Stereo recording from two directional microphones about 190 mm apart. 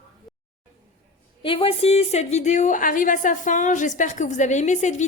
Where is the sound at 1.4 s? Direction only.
30° left (ahead or behind).